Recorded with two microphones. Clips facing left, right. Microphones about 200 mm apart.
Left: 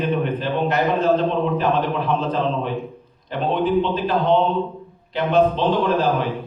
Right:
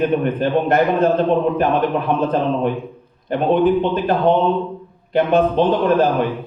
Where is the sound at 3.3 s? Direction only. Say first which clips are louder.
Right 5 dB; 50° right (ahead or behind).